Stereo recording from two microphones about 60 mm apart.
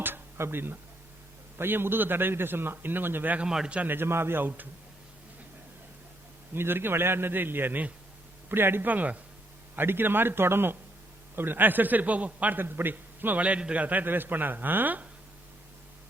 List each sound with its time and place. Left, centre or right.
0.0 s a sound: right
1.5 s a man's voice: right
3.4 s a man's voice: centre
3.8 s a man's voice: right
6.5 s a man's voice: right; by 13.8 s centre
13.8 s a man's voice: right